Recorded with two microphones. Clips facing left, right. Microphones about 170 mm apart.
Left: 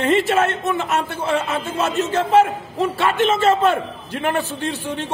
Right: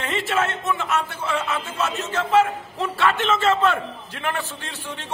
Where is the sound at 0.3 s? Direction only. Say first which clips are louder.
Left 5 dB; 55° left (ahead or behind).